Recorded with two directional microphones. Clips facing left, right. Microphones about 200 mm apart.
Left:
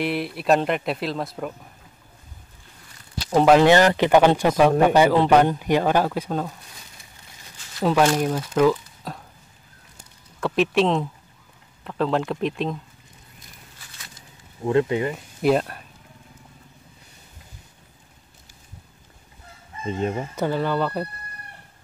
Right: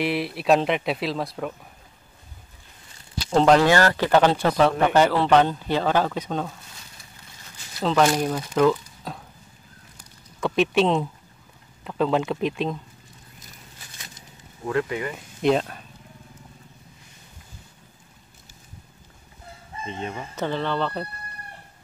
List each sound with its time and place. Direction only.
0.0 s speech: centre (ahead or behind)
3.3 s speech: 10° left (ahead or behind)
7.8 s speech: 10° left (ahead or behind)
10.4 s speech: centre (ahead or behind)
14.6 s speech: 25° left (ahead or behind)
15.1 s speech: 5° left (ahead or behind)
19.9 s speech: 40° left (ahead or behind)
20.3 s speech: 10° left (ahead or behind)